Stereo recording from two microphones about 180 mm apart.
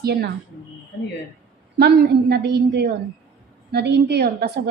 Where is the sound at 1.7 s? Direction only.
65° right (ahead or behind).